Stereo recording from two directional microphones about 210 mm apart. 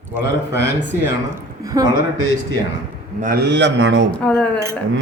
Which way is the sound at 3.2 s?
50° right (ahead or behind).